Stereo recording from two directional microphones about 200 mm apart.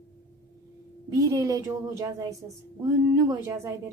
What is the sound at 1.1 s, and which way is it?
A woman's voice, 15° right (ahead or behind).